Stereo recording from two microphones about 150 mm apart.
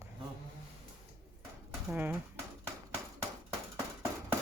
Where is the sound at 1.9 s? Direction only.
10° right (ahead or behind).